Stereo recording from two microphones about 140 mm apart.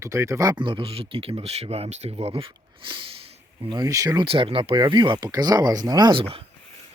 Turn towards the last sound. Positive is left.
turn(degrees=-40)  # may be behind; listen again after turning